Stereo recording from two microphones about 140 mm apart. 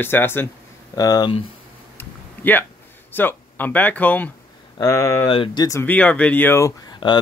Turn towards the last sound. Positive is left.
turn(degrees=35)  # may be behind; listen again after turning